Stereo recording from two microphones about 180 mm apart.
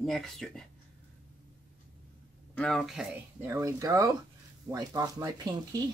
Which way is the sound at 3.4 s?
15° right (ahead or behind).